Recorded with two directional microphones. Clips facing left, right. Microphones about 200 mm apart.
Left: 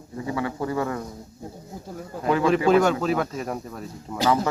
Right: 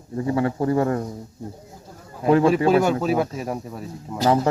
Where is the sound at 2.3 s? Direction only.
35° right (ahead or behind).